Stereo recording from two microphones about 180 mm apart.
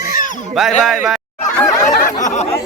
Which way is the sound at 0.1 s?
50° left (ahead or behind).